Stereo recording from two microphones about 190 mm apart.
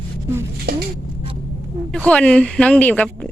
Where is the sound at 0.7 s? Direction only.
55° right (ahead or behind).